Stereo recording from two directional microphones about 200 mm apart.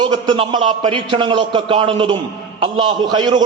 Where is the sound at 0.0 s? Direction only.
25° right (ahead or behind).